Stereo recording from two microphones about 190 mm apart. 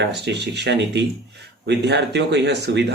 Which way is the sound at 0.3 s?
65° right (ahead or behind).